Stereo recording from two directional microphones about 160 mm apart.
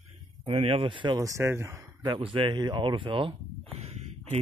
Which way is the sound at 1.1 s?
20° right (ahead or behind).